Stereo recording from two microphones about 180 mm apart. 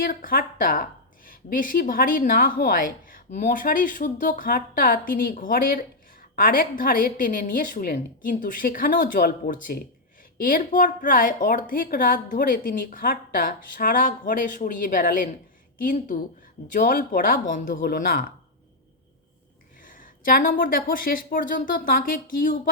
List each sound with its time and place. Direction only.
0.0 s a woman's voice: 50° left (ahead or behind)
19.8 s a woman's voice: 50° left (ahead or behind)